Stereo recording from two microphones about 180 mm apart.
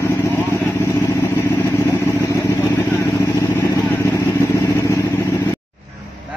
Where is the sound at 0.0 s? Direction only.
15° left (ahead or behind).